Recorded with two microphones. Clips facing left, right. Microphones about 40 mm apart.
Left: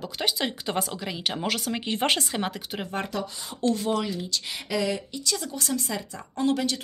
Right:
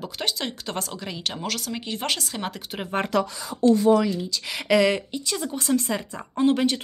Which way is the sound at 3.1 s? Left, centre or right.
Right.